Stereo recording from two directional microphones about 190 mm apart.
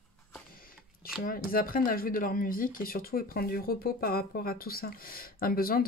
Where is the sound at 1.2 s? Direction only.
50° left (ahead or behind).